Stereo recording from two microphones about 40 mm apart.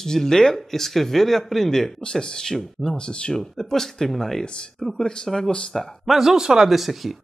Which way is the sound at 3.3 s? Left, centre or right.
Centre.